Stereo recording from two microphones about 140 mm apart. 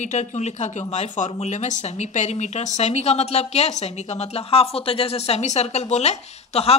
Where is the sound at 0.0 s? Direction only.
55° left (ahead or behind).